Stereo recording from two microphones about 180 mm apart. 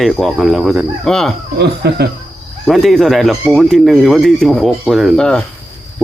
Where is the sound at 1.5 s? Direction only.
65° right (ahead or behind).